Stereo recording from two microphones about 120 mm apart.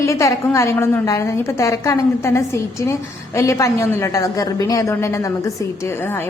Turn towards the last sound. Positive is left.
turn(degrees=20)  # may be behind; listen again after turning